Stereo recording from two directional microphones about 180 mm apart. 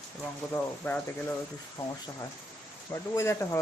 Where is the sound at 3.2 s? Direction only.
15° left (ahead or behind).